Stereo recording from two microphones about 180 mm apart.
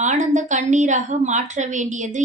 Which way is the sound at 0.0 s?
40° right (ahead or behind).